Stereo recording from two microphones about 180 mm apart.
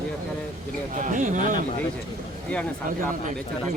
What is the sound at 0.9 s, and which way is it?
Speech, 45° right (ahead or behind).